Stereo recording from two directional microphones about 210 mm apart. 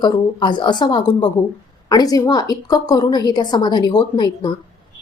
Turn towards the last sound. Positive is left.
turn(degrees=20)  # may be behind; listen again after turning